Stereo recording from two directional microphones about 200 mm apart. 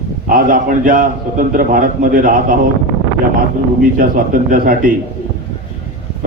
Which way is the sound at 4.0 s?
45° right (ahead or behind).